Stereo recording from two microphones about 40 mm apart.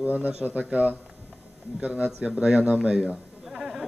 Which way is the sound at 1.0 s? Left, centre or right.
Right.